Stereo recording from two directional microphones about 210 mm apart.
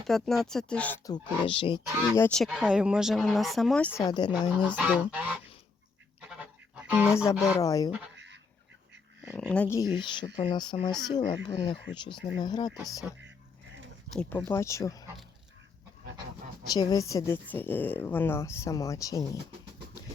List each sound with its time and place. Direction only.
0.1 s speech: centre (ahead or behind)
1.0 s speech: 20° left (ahead or behind)
2.1 s speech: 10° left (ahead or behind)
2.4 s speech: 5° right (ahead or behind)
4.0 s speech: 20° left (ahead or behind)
4.6 s goose: 5° right (ahead or behind)
6.4 s music: 5° right (ahead or behind)
7.2 s speech: 15° left (ahead or behind)
8.1 s duck: 60° right (ahead or behind)
9.5 s speech: 10° left (ahead or behind)
9.9 s speech: 20° left (ahead or behind)
14.1 s speech: 5° left (ahead or behind)
16.6 s speech: 20° left (ahead or behind)